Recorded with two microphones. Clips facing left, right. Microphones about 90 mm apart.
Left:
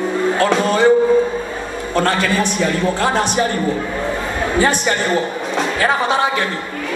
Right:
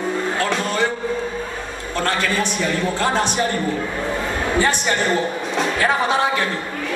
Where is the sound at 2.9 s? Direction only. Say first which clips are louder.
Left 3 dB; 10° left (ahead or behind).